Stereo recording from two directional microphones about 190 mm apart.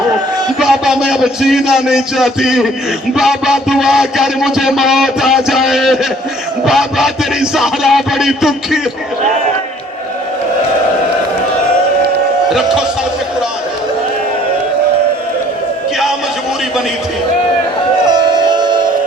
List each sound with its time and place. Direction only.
0.6 s music: 5° right (ahead or behind)
12.5 s speech: centre (ahead or behind)
18.0 s music: 25° right (ahead or behind)